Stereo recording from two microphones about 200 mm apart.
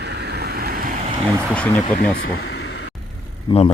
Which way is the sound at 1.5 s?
5° left (ahead or behind).